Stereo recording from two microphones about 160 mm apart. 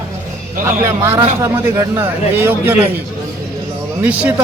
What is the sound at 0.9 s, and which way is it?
Speech, 15° right (ahead or behind).